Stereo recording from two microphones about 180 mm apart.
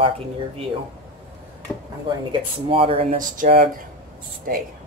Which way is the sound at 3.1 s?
50° right (ahead or behind).